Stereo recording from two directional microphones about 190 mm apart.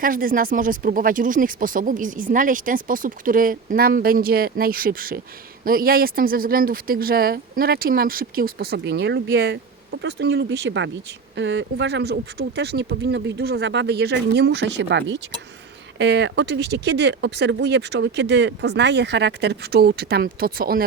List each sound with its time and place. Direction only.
0.0 s speech: 45° right (ahead or behind)